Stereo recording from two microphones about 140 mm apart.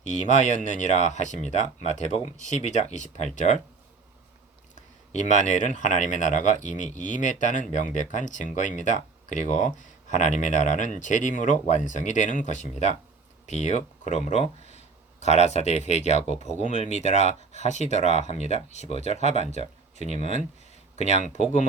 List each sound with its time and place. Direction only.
0.0 s speech: 60° left (ahead or behind)
4.7 s speech: 60° left (ahead or behind)